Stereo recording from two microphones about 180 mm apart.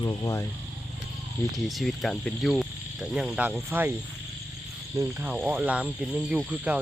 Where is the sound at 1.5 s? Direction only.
Centre (ahead or behind).